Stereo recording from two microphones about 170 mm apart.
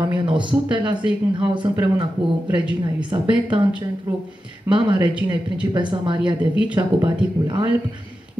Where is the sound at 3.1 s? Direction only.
20° right (ahead or behind).